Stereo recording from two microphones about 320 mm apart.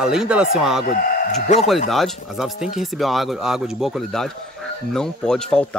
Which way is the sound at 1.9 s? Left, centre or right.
Centre.